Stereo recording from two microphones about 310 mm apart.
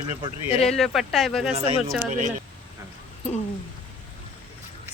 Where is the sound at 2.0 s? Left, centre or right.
Right.